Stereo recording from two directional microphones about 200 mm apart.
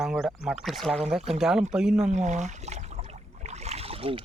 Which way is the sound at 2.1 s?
35° right (ahead or behind).